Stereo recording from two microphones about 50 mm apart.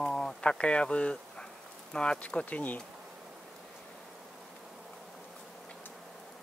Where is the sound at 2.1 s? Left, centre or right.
Left.